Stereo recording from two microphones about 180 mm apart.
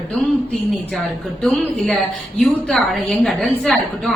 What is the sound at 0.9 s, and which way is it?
A woman's voice, centre (ahead or behind).